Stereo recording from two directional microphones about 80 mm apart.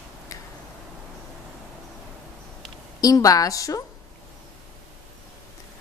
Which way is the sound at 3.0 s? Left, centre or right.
Left.